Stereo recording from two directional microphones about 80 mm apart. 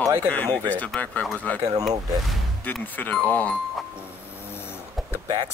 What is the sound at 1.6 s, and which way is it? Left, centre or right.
Speech, right.